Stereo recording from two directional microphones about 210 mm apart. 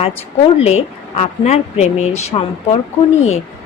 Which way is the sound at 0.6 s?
30° left (ahead or behind).